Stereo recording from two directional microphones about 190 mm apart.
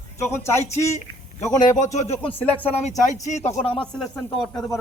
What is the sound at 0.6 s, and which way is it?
Speech, 35° left (ahead or behind).